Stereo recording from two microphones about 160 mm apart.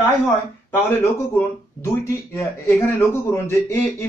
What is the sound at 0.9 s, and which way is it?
Speech, 15° left (ahead or behind).